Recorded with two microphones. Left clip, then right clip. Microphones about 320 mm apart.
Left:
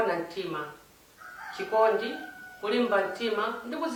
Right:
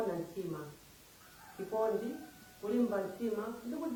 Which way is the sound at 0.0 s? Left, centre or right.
Centre.